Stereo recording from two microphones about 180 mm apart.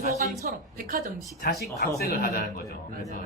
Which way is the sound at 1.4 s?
60° left (ahead or behind).